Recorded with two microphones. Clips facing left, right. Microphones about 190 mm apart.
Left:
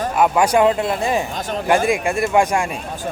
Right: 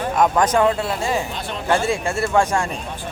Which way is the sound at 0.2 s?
10° left (ahead or behind).